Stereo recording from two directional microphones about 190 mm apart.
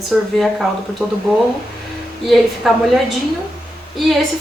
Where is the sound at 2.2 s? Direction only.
Centre (ahead or behind).